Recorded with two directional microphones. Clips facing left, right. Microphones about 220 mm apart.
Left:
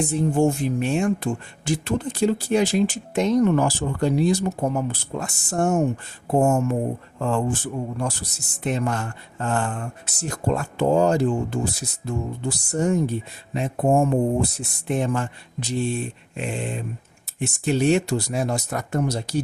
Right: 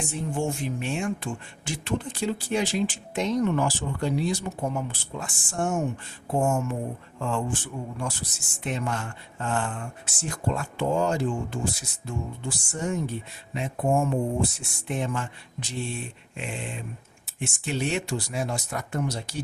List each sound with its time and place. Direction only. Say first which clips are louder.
0.0 s speech: left 9 dB; 40° left (ahead or behind)